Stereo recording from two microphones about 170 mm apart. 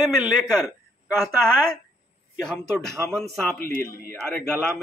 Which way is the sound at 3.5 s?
60° left (ahead or behind).